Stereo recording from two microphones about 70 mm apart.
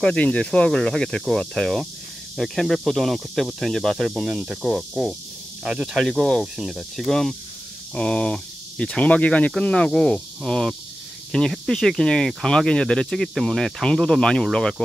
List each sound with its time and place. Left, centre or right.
0.0 s speech: centre
2.3 s speech: centre
5.6 s speech: centre
7.0 s speech: centre